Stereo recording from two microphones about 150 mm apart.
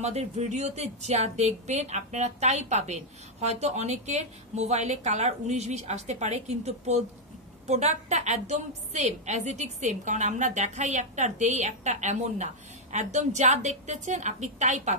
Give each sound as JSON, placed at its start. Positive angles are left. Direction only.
{"t": 0.0, "sound": "speech", "side_deg": -50}